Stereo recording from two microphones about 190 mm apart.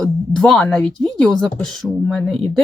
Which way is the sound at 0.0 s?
5° left (ahead or behind).